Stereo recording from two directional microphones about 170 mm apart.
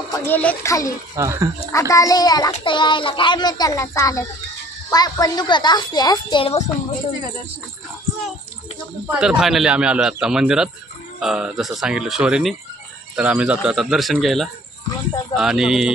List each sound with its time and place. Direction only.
0.1 s speech: 10° left (ahead or behind)
1.1 s speech: 20° right (ahead or behind)
1.7 s a child's voice: 20° left (ahead or behind); by 6.7 s 35° left (ahead or behind)
9.0 s a man's voice: 5° right (ahead or behind)